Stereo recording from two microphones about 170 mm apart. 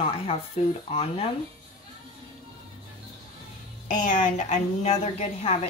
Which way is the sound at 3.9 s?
45° left (ahead or behind).